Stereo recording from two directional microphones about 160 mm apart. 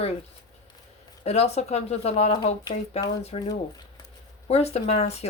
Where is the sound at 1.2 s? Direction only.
40° left (ahead or behind).